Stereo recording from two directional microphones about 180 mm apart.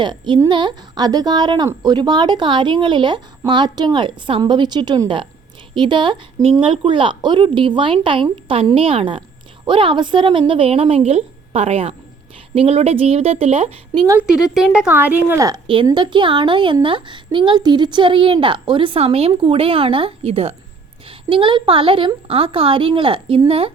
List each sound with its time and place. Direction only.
0.0 s speech: 25° right (ahead or behind)
14.5 s speech: 5° right (ahead or behind); by 23.7 s 30° right (ahead or behind)